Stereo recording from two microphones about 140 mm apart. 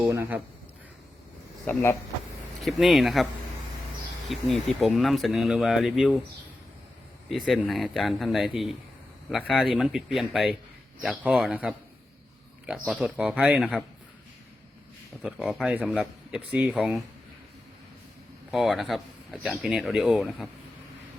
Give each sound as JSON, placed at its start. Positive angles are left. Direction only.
{"t": 0.0, "sound": "speech", "side_deg": -20}
{"t": 1.6, "sound": "speech", "side_deg": 20}
{"t": 2.6, "sound": "speech", "side_deg": 0}
{"t": 4.3, "sound": "speech", "side_deg": 0}
{"t": 7.3, "sound": "speech", "side_deg": 0}
{"t": 12.9, "sound": "speech", "side_deg": -5}
{"t": 15.2, "sound": "speech", "side_deg": -5}
{"t": 18.5, "sound": "speech", "side_deg": 0}